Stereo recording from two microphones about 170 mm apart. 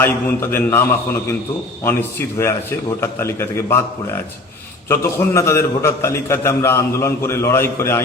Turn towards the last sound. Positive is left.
turn(degrees=15)  # may be behind; listen again after turning